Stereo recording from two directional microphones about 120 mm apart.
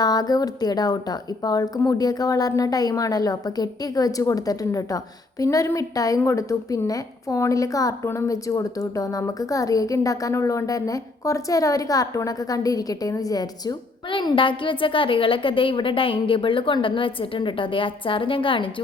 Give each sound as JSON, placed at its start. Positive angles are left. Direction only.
{"t": 0.0, "sound": "a woman's voice", "side_deg": 35}
{"t": 14.1, "sound": "a woman's voice", "side_deg": 45}